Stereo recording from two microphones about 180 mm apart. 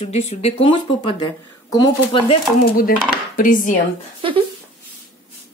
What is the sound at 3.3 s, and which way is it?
Speech, 50° left (ahead or behind).